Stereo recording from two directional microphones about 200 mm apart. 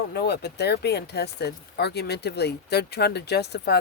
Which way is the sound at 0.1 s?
55° left (ahead or behind).